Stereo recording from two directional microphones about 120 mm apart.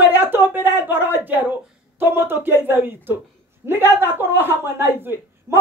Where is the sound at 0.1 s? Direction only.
15° right (ahead or behind).